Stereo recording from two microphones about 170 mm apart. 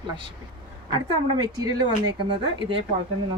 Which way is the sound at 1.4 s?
25° right (ahead or behind).